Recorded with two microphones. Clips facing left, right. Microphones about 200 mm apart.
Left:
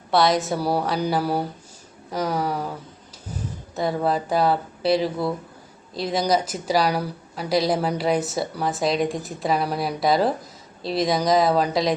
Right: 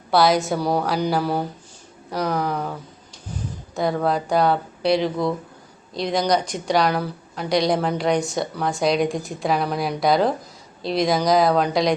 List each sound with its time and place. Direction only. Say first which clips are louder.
0.1 s a woman's voice: right 2 dB; centre (ahead or behind)
3.8 s a woman's voice: right 1 dB; centre (ahead or behind)